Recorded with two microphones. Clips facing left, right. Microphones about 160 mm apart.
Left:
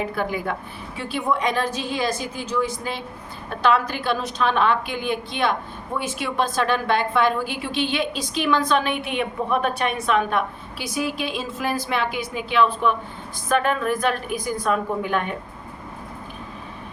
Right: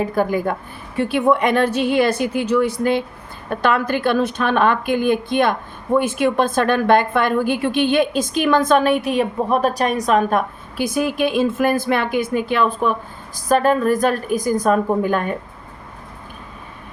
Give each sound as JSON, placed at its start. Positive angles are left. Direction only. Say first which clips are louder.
{"t": 0.0, "sound": "speech", "louder": "right 6 dB", "side_deg": -45}
{"t": 0.9, "sound": "a woman's voice", "louder": "right 8 dB", "side_deg": -55}